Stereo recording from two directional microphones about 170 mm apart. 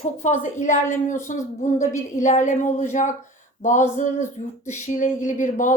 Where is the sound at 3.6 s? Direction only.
45° left (ahead or behind).